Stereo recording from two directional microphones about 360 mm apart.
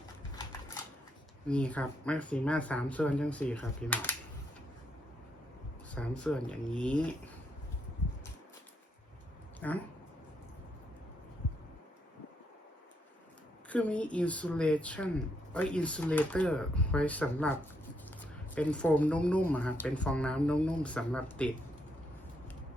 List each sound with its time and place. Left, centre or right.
1.5 s speech: centre
5.9 s speech: centre
9.6 s speech: centre
13.7 s speech: centre